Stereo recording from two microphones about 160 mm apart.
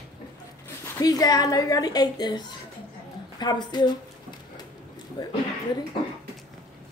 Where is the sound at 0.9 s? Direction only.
25° left (ahead or behind).